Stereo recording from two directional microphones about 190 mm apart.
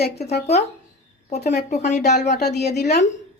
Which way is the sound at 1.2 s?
35° left (ahead or behind).